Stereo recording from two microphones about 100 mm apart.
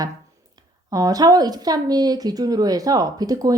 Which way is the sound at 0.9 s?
40° right (ahead or behind).